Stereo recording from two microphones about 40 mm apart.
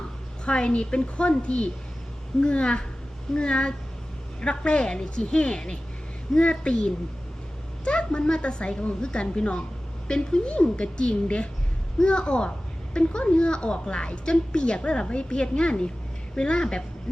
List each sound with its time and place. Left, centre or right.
0.4 s a child's voice: left